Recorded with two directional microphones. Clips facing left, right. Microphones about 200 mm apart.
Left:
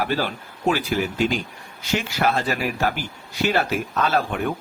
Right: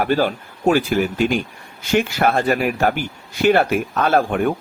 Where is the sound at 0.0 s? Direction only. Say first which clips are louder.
Right 6 dB; 50° right (ahead or behind).